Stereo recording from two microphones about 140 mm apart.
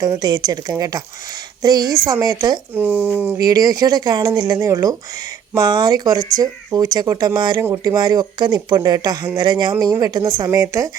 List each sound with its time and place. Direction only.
0.0 s speech: 25° right (ahead or behind)
2.7 s speech: 15° right (ahead or behind)
3.4 s speech: 25° right (ahead or behind)